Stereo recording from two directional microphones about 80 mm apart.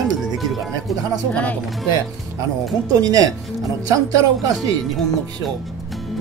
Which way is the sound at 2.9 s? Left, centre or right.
Right.